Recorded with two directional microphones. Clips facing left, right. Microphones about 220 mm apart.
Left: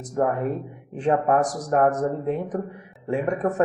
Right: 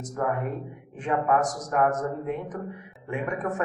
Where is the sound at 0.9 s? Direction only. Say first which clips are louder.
Left 4 dB; 35° left (ahead or behind).